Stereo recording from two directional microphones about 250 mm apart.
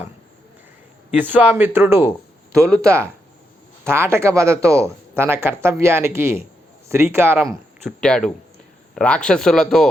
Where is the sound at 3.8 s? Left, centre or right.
Centre.